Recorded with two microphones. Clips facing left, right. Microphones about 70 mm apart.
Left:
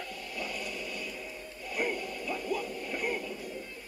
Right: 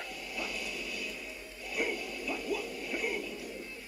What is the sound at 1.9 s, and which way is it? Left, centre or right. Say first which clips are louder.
Music: left 2 dB; left.